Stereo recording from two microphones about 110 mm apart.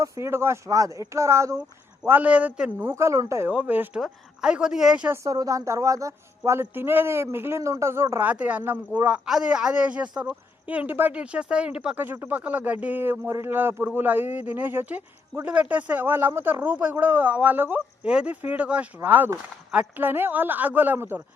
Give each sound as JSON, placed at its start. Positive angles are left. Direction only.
{"t": 0.0, "sound": "speech", "side_deg": -25}
{"t": 2.0, "sound": "speech", "side_deg": -15}
{"t": 3.5, "sound": "a man's voice", "side_deg": -10}
{"t": 5.1, "sound": "speech", "side_deg": -30}
{"t": 8.3, "sound": "a man's voice", "side_deg": -15}